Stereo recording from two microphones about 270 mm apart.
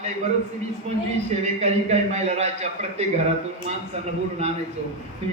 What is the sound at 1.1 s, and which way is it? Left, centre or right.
A man's voice, right.